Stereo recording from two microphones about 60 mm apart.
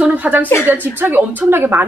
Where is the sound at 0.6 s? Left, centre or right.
Right.